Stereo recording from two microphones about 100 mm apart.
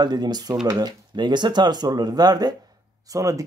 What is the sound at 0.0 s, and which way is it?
Speech, 45° right (ahead or behind).